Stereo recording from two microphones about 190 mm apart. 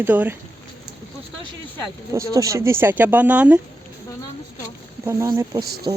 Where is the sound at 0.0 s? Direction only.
10° right (ahead or behind).